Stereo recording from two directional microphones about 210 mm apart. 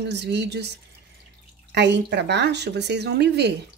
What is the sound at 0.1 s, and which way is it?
Speech, 55° right (ahead or behind).